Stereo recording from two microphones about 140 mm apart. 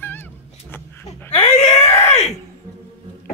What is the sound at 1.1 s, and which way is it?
Screaming, 50° left (ahead or behind).